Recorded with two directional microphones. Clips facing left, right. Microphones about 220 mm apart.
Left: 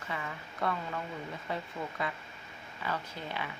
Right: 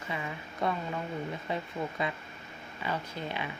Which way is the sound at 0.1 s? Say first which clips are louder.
Right 2 dB; 20° right (ahead or behind).